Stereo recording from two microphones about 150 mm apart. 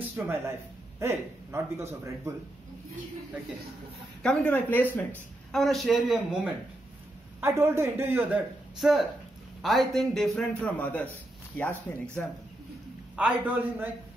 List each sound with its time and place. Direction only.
0.1 s a man's voice: 15° right (ahead or behind)
4.2 s a man's voice: 5° left (ahead or behind); by 8.4 s 15° right (ahead or behind)
8.7 s a man's voice: centre (ahead or behind)
13.1 s a man's voice: 10° right (ahead or behind)